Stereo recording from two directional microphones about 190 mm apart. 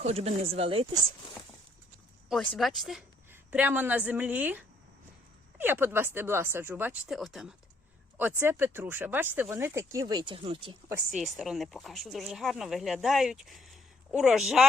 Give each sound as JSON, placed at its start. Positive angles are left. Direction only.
{"t": 0.0, "sound": "speech", "side_deg": -30}
{"t": 2.3, "sound": "speech", "side_deg": 0}
{"t": 8.4, "sound": "speech", "side_deg": -10}
{"t": 11.1, "sound": "speech", "side_deg": 0}